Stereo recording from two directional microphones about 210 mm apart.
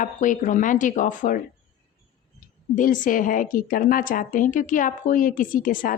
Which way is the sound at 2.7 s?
40° left (ahead or behind).